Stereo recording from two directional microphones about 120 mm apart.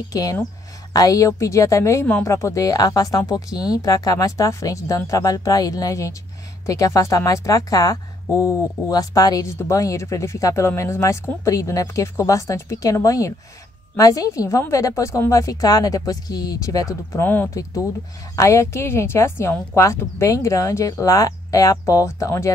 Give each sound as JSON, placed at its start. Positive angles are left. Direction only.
{"t": 0.1, "sound": "speech", "side_deg": 30}
{"t": 3.4, "sound": "speech", "side_deg": -5}
{"t": 3.7, "sound": "speech", "side_deg": 30}